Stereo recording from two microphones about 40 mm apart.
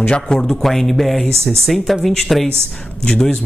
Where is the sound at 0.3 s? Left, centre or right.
Centre.